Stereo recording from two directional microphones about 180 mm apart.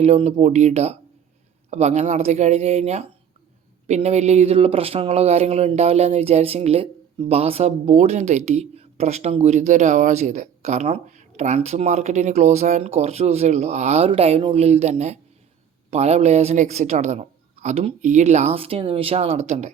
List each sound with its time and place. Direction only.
0.0 s speech: 35° right (ahead or behind)